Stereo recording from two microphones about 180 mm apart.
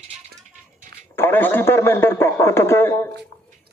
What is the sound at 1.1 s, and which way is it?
Speech, 10° left (ahead or behind).